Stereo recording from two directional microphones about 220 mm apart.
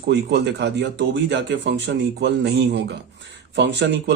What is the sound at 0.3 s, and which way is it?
Speech, 50° right (ahead or behind).